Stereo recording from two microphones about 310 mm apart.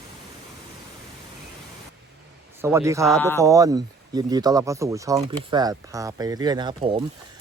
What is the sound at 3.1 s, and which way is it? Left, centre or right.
Speech, centre.